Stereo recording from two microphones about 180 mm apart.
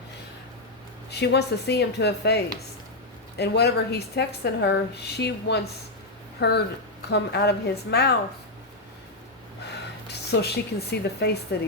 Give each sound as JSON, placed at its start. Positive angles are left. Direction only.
{"t": 1.1, "sound": "a woman's voice", "side_deg": 65}
{"t": 10.1, "sound": "a woman's voice", "side_deg": 65}